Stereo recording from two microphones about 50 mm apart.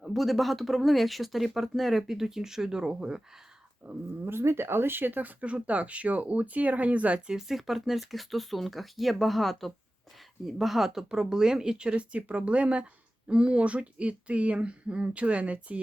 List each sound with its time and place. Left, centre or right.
0.0 s speech: centre
3.8 s speech: right
4.3 s speech: right
7.3 s speech: centre; by 15.8 s right